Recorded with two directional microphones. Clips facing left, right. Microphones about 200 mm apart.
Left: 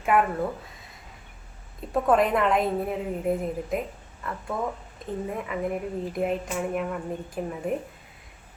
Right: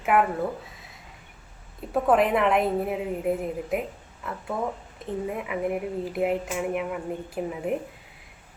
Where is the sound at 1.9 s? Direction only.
5° right (ahead or behind).